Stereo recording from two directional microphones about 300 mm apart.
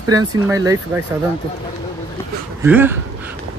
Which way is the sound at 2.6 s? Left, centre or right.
Centre.